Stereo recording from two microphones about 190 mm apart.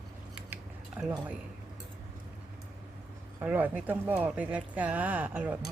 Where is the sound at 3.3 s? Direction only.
10° right (ahead or behind).